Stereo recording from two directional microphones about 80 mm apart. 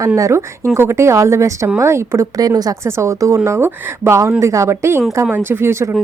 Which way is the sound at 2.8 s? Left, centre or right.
Right.